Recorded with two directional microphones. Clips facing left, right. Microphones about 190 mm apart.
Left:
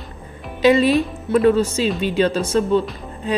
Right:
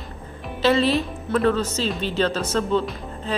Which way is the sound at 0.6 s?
15° left (ahead or behind).